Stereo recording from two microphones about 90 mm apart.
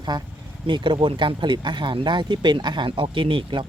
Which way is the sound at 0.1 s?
50° right (ahead or behind).